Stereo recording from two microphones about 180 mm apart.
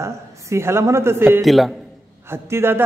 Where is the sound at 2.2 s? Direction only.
15° right (ahead or behind).